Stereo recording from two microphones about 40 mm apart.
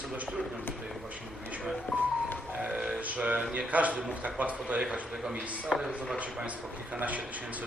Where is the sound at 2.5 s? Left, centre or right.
Right.